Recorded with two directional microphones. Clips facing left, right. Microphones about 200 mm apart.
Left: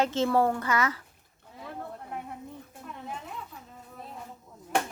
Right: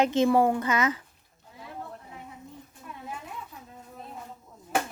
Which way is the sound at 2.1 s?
60° left (ahead or behind).